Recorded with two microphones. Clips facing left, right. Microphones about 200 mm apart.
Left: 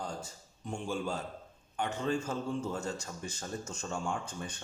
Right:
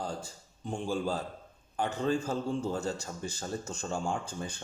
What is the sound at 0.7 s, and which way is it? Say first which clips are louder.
A man's voice: right 3 dB; 35° right (ahead or behind).